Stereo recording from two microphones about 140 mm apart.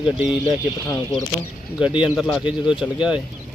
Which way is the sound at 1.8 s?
10° right (ahead or behind).